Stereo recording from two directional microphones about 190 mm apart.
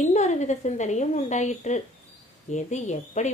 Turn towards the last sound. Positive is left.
turn(degrees=35)  # may be behind; listen again after turning